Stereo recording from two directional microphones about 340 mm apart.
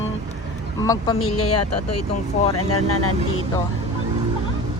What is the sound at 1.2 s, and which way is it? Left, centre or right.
Speech, left.